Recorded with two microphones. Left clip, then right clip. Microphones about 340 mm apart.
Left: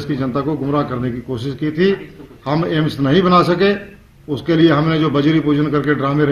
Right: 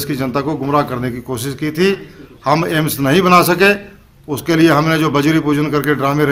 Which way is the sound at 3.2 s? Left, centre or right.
Right.